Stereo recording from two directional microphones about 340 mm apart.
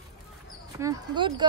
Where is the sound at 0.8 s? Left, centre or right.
Centre.